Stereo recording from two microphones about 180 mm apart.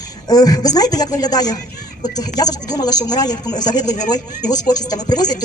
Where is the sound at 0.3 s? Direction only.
20° left (ahead or behind).